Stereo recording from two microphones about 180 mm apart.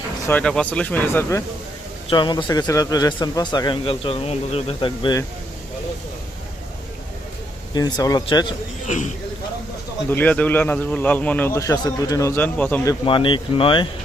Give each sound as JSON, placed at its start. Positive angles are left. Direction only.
{"t": 0.3, "sound": "a man's voice", "side_deg": 5}
{"t": 2.0, "sound": "speech", "side_deg": 25}
{"t": 7.7, "sound": "speech", "side_deg": 25}
{"t": 10.1, "sound": "a man's voice", "side_deg": 10}
{"t": 12.8, "sound": "speech", "side_deg": 25}